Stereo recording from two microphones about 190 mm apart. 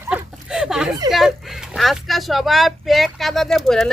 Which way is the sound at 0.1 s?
5° right (ahead or behind).